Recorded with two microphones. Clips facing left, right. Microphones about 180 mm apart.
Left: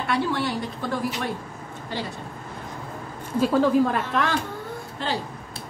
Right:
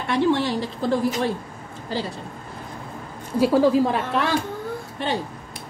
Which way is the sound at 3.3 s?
10° right (ahead or behind).